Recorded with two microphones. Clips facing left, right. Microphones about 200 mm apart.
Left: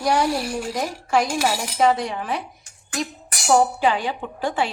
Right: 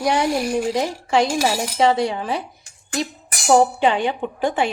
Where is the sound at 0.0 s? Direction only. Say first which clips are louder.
Right 1 dB; 20° right (ahead or behind).